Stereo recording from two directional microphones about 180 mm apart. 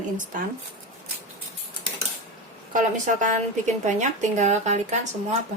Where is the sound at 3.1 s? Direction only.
45° right (ahead or behind).